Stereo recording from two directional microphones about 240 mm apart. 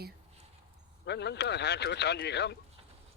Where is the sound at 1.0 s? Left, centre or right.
Left.